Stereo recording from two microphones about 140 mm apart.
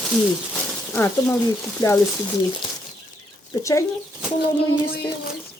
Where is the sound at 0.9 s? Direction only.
15° left (ahead or behind).